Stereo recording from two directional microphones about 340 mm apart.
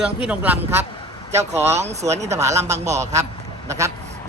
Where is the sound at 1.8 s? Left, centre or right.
Centre.